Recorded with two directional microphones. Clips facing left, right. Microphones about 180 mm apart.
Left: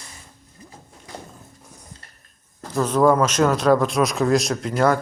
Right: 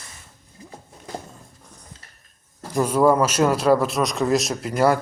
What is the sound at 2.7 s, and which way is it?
A man's voice, 10° right (ahead or behind).